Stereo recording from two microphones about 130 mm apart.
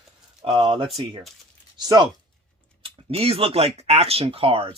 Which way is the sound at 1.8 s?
30° right (ahead or behind).